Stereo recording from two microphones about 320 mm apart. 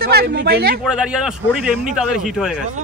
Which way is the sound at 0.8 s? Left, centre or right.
Centre.